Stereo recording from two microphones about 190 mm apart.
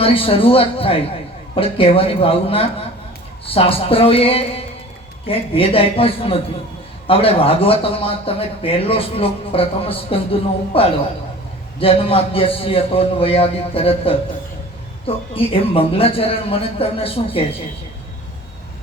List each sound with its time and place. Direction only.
0.0 s speech: 30° left (ahead or behind)